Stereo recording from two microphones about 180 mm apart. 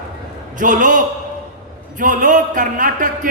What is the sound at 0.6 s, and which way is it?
Speech, 45° right (ahead or behind).